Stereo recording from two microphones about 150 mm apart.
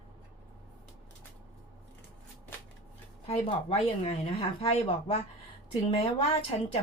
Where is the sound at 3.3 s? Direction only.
40° left (ahead or behind).